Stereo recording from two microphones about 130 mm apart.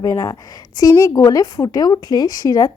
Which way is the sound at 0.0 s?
25° left (ahead or behind).